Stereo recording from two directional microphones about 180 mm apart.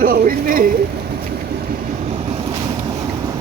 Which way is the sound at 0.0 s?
55° right (ahead or behind).